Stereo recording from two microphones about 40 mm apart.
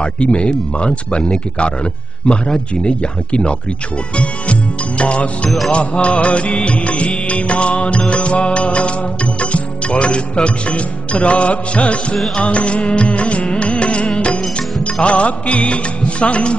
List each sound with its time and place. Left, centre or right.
0.0 s speech: left
4.2 s music: left